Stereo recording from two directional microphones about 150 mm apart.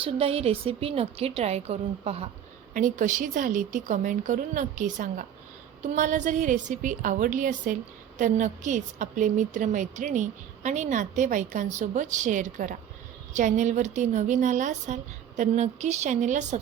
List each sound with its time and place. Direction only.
0.0 s a woman's voice: 40° right (ahead or behind)
2.7 s a woman's voice: 60° right (ahead or behind)